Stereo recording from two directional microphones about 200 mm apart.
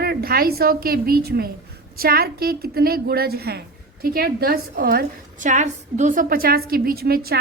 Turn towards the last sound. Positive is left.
turn(degrees=-50)  # may be behind; listen again after turning